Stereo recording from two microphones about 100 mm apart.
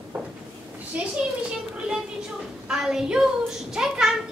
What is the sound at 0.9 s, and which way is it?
Speech, 15° right (ahead or behind).